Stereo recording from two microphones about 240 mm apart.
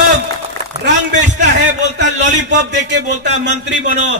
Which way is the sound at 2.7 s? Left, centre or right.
Right.